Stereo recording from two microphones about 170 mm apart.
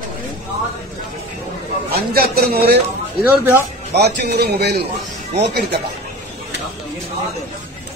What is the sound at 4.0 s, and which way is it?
A man's voice, 70° right (ahead or behind).